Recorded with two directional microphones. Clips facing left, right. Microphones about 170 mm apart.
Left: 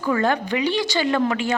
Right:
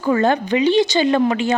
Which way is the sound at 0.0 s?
25° right (ahead or behind).